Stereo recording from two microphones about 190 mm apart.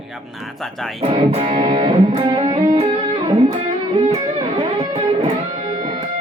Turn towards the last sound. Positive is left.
turn(degrees=-30)  # may be behind; listen again after turning